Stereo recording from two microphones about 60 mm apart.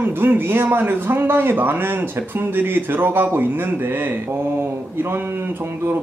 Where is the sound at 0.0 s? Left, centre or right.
Right.